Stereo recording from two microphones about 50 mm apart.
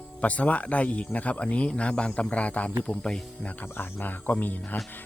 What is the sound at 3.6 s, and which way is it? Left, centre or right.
Speech, left.